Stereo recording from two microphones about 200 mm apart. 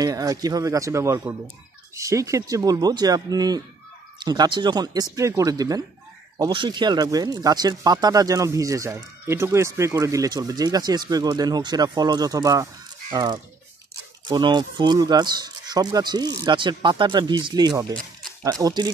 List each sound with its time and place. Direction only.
0.0 s speech: 15° right (ahead or behind)